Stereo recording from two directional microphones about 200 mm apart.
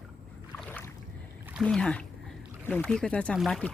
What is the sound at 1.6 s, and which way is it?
Speech, 5° left (ahead or behind).